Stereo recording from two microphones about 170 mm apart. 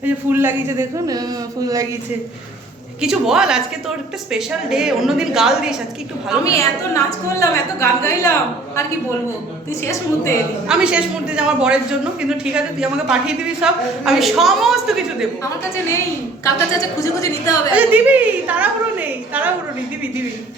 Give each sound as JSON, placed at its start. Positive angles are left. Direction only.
{"t": 0.0, "sound": "a man's voice", "side_deg": -10}
{"t": 3.0, "sound": "a woman's voice", "side_deg": -5}
{"t": 6.4, "sound": "a woman's voice", "side_deg": 20}
{"t": 9.8, "sound": "a woman's voice", "side_deg": 15}
{"t": 10.7, "sound": "a woman's voice", "side_deg": -5}
{"t": 17.0, "sound": "a woman's voice", "side_deg": 20}
{"t": 17.7, "sound": "a woman's voice", "side_deg": -10}